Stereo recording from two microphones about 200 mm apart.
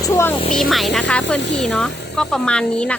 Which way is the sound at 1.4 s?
60° left (ahead or behind).